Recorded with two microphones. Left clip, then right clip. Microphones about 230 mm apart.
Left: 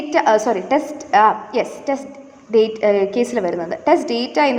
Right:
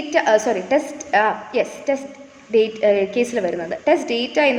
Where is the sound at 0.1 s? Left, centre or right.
Centre.